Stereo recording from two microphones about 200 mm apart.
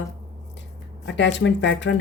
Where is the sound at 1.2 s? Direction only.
60° left (ahead or behind).